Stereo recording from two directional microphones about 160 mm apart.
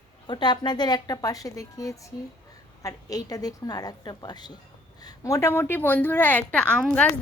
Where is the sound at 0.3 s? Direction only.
30° left (ahead or behind).